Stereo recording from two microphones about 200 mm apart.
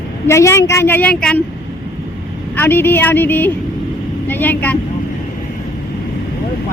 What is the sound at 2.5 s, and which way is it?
A woman's voice, 10° left (ahead or behind).